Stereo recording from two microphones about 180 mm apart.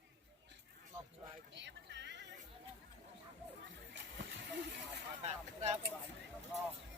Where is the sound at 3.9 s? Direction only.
80° right.